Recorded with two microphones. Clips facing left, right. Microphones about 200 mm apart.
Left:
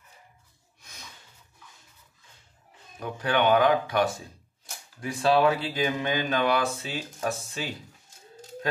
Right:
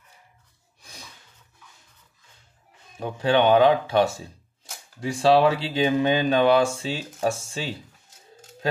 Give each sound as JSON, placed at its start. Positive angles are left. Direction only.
{"t": 3.0, "sound": "speech", "side_deg": -25}